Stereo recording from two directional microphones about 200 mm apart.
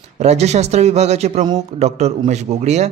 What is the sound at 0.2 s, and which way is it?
Speech, 35° right (ahead or behind).